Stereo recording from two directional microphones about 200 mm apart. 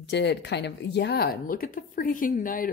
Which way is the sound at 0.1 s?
60° left (ahead or behind).